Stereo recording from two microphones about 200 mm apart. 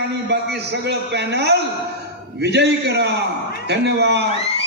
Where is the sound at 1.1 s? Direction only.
60° right (ahead or behind).